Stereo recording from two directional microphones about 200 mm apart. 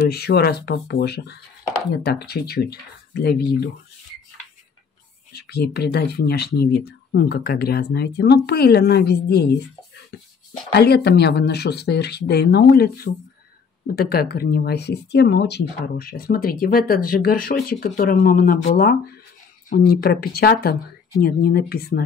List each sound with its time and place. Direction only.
0.0 s speech: 55° left (ahead or behind)
5.3 s speech: 55° left (ahead or behind)
10.1 s music: 55° left (ahead or behind)
10.7 s speech: 55° left (ahead or behind)